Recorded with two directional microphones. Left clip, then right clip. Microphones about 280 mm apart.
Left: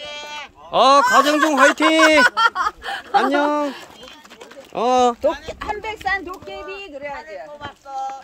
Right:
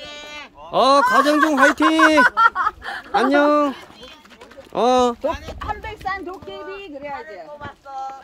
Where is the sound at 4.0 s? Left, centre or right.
Left.